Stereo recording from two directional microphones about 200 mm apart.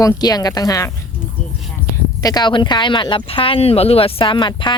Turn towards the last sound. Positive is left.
turn(degrees=25)  # may be behind; listen again after turning